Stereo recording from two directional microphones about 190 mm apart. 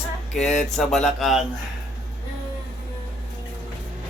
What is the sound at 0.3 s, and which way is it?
Speech, centre (ahead or behind).